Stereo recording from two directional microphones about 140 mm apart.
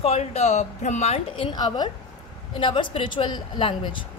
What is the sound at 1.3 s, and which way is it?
Speech, 35° left (ahead or behind).